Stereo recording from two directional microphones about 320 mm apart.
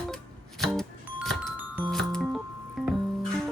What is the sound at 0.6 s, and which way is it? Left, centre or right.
Music, centre.